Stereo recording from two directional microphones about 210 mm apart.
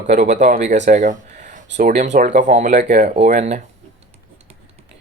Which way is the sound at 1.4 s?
35° right (ahead or behind).